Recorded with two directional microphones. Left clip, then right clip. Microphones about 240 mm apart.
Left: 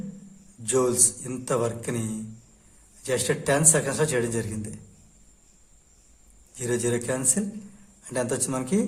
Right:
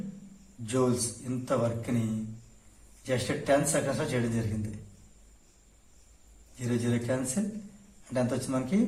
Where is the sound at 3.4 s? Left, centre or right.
Left.